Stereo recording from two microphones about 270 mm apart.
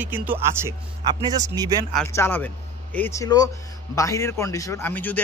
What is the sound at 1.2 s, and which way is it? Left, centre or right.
Speech, centre.